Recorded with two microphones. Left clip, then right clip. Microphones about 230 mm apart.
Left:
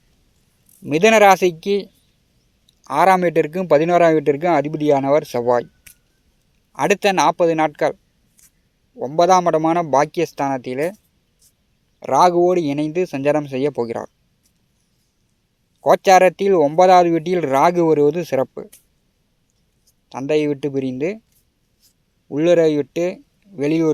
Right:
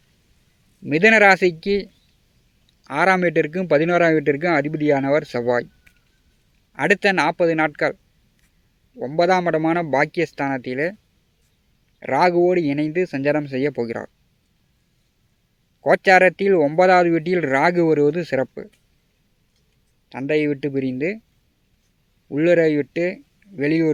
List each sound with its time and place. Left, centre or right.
0.9 s speech: centre
9.0 s speech: centre
11.9 s speech: left
15.8 s speech: centre
20.1 s speech: centre
22.3 s speech: centre